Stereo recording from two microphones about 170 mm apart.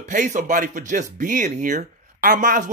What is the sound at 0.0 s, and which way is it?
Speech, 45° right (ahead or behind).